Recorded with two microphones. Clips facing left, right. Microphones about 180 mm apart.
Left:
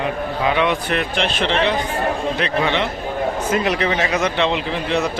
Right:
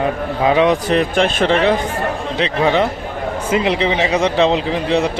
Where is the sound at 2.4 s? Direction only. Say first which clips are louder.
Right 8 dB; 35° right (ahead or behind).